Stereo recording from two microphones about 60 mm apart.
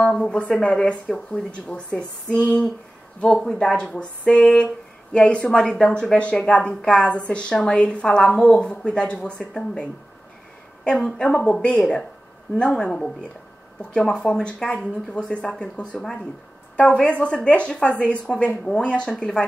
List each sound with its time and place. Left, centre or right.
0.0 s a woman's voice: centre